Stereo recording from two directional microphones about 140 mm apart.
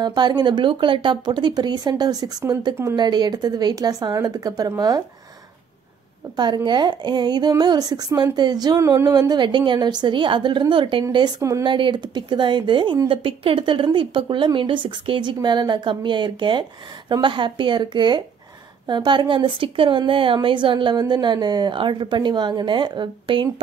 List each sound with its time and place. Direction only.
0.0 s speech: 30° right (ahead or behind)
6.3 s a woman's voice: 30° right (ahead or behind)